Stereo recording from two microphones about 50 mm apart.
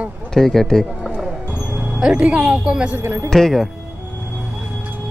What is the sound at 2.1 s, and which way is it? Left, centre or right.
Speech, right.